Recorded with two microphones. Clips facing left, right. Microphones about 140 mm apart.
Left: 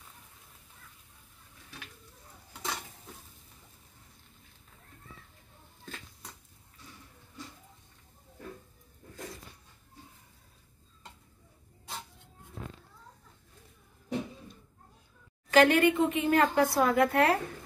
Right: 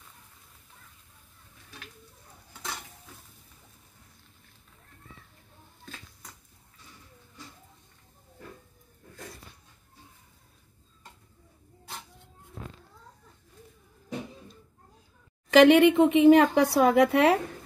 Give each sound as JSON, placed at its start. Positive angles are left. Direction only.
{"t": 15.5, "sound": "a woman's voice", "side_deg": -90}
{"t": 16.9, "sound": "a woman's voice", "side_deg": -90}